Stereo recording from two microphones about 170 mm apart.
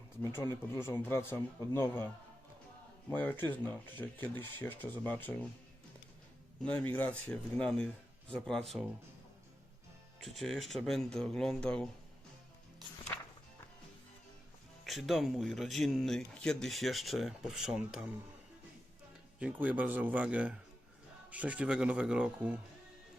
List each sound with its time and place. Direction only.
0.2 s speech: 15° left (ahead or behind)
3.1 s speech: 10° left (ahead or behind)
6.6 s speech: 10° left (ahead or behind)
10.2 s speech: centre (ahead or behind)
14.8 s speech: centre (ahead or behind)
19.4 s speech: 10° right (ahead or behind)